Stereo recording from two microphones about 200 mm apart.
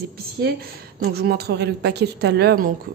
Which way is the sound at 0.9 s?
50° right (ahead or behind).